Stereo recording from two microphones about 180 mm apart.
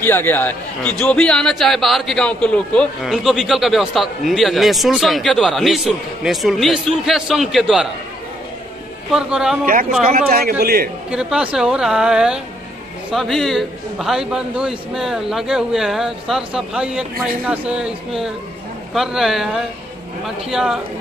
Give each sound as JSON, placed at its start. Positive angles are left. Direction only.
{"t": 0.0, "sound": "a man's voice", "side_deg": 10}
{"t": 9.1, "sound": "a man's voice", "side_deg": -5}
{"t": 10.1, "sound": "speech", "side_deg": -55}
{"t": 11.1, "sound": "a man's voice", "side_deg": -5}